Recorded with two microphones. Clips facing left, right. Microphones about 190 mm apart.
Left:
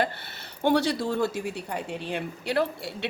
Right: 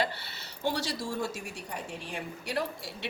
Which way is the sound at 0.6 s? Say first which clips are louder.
Left 9 dB; 60° left (ahead or behind).